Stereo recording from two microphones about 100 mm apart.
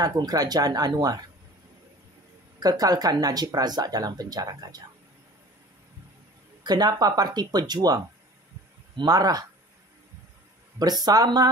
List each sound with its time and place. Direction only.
0.2 s speech: 40° right (ahead or behind)
2.6 s speech: 40° right (ahead or behind)
6.6 s speech: 45° right (ahead or behind)
10.8 s speech: 40° right (ahead or behind)